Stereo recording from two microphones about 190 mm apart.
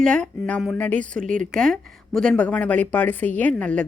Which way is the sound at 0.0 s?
5° left (ahead or behind).